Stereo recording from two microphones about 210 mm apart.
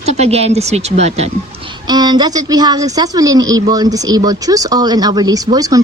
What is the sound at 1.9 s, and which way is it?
A woman's voice, 20° right (ahead or behind).